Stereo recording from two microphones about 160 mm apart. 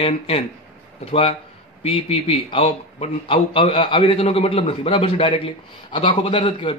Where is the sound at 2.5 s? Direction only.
35° left (ahead or behind).